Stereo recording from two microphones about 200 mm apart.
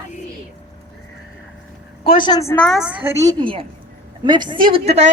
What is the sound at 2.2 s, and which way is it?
Speech, 20° left (ahead or behind).